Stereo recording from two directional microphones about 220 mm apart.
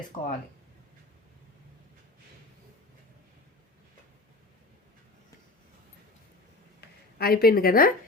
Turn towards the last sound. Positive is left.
turn(degrees=40)  # may be behind; listen again after turning